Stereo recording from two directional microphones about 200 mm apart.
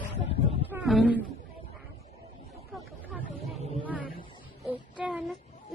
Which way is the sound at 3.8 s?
5° right (ahead or behind).